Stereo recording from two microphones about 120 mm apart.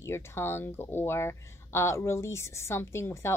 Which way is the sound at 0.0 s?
20° left (ahead or behind).